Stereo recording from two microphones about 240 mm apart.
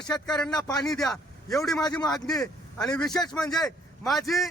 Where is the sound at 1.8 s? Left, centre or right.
Centre.